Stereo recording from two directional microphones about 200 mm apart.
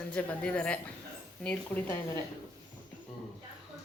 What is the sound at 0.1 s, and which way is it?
Speech, 5° left (ahead or behind).